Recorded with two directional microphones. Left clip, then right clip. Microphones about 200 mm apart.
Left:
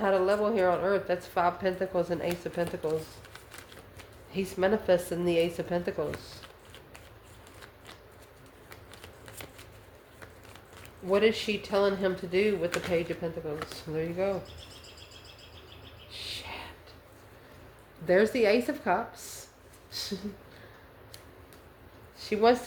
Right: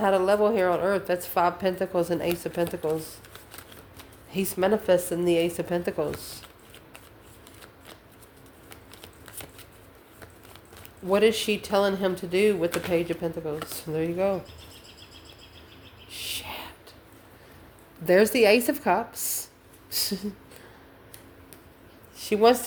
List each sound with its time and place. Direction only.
0.0 s a woman's voice: 40° right (ahead or behind)
4.3 s a woman's voice: 40° right (ahead or behind)
11.1 s a woman's voice: 40° right (ahead or behind)
16.0 s a sound: 50° right (ahead or behind)
18.0 s speech: 50° right (ahead or behind)
22.2 s speech: 45° right (ahead or behind)